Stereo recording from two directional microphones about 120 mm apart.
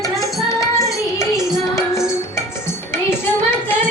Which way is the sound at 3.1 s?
20° left (ahead or behind).